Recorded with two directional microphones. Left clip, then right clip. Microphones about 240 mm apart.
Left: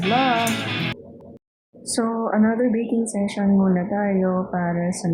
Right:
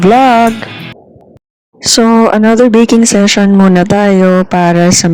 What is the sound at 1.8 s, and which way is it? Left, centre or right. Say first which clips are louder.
Speech: right 17 dB; right.